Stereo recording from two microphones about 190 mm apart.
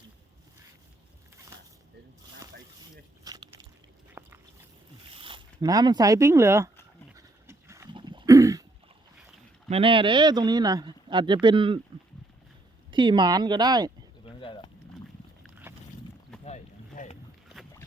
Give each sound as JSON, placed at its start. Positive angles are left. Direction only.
{"t": 3.2, "sound": "biting", "side_deg": -20}
{"t": 4.2, "sound": "a sound", "side_deg": -15}
{"t": 5.1, "sound": "speech", "side_deg": -25}
{"t": 7.2, "sound": "pig", "side_deg": -15}
{"t": 7.9, "sound": "cough", "side_deg": -25}
{"t": 9.6, "sound": "speech", "side_deg": -30}
{"t": 12.9, "sound": "speech", "side_deg": -25}
{"t": 14.3, "sound": "a sound", "side_deg": 25}
{"t": 15.7, "sound": "boat", "side_deg": -15}
{"t": 16.4, "sound": "boat", "side_deg": 35}